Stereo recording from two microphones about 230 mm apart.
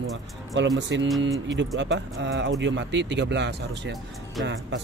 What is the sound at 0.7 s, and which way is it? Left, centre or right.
Speech, right.